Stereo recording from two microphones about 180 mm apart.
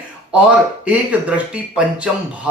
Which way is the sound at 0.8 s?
5° right (ahead or behind).